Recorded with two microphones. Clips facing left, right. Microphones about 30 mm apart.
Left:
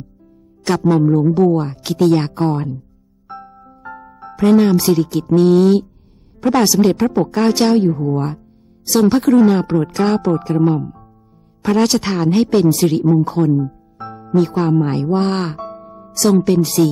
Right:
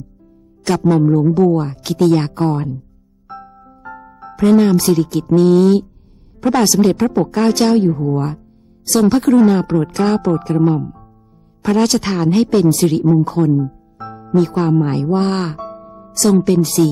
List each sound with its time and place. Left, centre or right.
0.6 s speech: centre
3.2 s music: centre
6.4 s speech: centre
9.2 s speech: centre
9.5 s speech: centre